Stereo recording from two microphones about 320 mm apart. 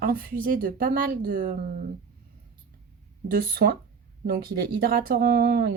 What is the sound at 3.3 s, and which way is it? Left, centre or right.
Speech, right.